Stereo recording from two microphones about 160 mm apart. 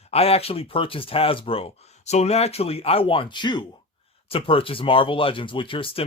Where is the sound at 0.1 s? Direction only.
40° left (ahead or behind).